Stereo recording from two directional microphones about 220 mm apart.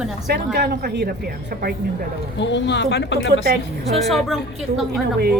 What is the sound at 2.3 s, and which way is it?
Speech, 55° left (ahead or behind).